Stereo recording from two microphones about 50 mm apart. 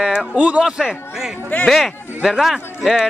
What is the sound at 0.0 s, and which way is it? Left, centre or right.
Speech, centre.